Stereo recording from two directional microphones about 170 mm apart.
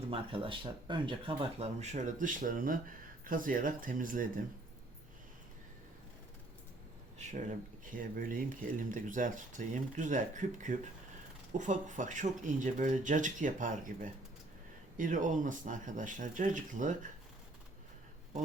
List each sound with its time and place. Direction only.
0.1 s speech: 30° right (ahead or behind); by 4.3 s 50° right (ahead or behind)
7.2 s a sound: 45° right (ahead or behind)
8.1 s speech: 55° right (ahead or behind)